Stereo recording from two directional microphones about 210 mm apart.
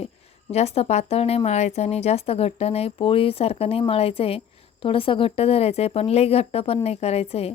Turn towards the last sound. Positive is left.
turn(degrees=30)  # may be behind; listen again after turning